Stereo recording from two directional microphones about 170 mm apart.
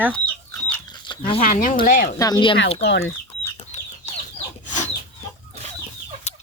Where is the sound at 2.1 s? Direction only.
20° left (ahead or behind).